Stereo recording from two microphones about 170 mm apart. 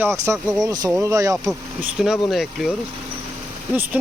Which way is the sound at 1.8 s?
5° right (ahead or behind).